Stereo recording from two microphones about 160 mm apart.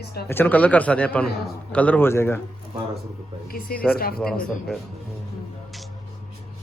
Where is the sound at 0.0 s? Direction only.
80° left.